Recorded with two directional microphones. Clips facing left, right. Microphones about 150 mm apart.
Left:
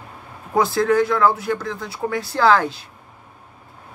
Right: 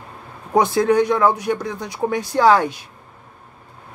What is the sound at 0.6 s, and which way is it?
Speech, 20° right (ahead or behind).